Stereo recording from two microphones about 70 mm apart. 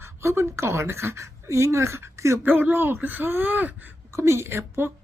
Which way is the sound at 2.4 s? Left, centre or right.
Right.